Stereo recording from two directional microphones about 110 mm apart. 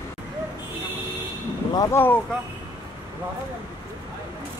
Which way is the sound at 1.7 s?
25° left (ahead or behind).